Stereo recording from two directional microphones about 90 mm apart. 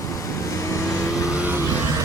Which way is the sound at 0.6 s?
35° left (ahead or behind).